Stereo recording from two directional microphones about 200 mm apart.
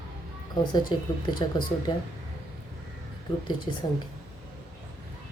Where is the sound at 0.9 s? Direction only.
25° left (ahead or behind).